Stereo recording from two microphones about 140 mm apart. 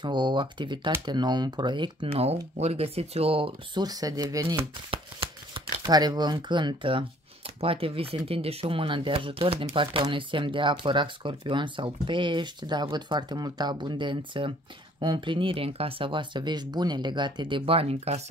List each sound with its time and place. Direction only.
0.0 s speech: 35° right (ahead or behind)
2.1 s speech: 50° right (ahead or behind); by 4.6 s 25° right (ahead or behind)
4.9 s speech: 35° right (ahead or behind)